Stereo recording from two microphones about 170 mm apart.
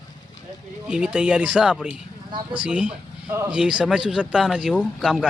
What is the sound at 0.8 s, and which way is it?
Speech, 5° right (ahead or behind).